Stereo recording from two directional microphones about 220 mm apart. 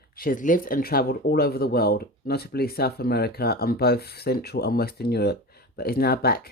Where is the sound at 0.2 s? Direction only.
40° left (ahead or behind).